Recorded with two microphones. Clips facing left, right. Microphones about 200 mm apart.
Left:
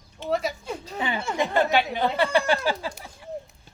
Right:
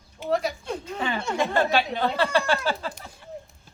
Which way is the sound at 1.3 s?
15° left (ahead or behind).